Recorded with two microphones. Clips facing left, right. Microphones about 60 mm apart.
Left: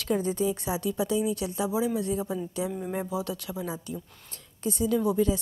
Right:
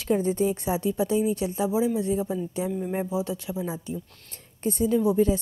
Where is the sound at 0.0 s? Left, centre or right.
Right.